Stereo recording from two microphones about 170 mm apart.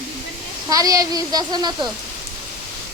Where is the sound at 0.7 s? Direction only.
20° right (ahead or behind).